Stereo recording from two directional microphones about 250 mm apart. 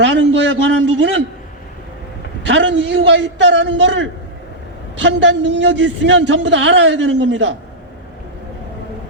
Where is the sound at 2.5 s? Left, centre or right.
Right.